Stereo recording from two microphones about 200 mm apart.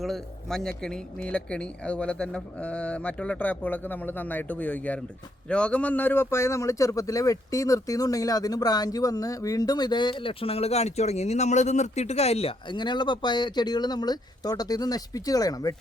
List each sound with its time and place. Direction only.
0.0 s speech: centre (ahead or behind); by 15.7 s 20° left (ahead or behind)